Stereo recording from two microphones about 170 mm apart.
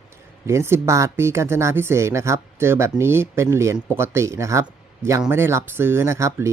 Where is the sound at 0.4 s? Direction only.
15° right (ahead or behind).